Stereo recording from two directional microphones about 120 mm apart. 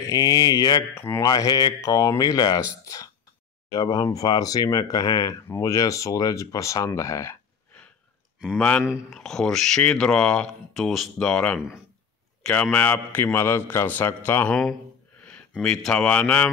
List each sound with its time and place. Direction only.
0.0 s speech: 30° left (ahead or behind)
0.9 s speech: 20° left (ahead or behind)
1.2 s speech: 30° left (ahead or behind)
8.5 s a man's voice: 10° left (ahead or behind)
12.7 s a man's voice: 15° left (ahead or behind)
15.6 s a man's voice: 5° left (ahead or behind)